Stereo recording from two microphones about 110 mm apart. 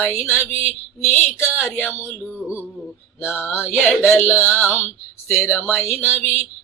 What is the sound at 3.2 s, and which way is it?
Female singing, 15° left (ahead or behind).